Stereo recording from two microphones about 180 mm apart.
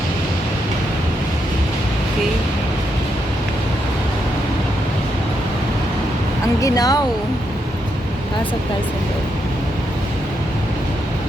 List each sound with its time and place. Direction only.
6.6 s speech: 20° left (ahead or behind)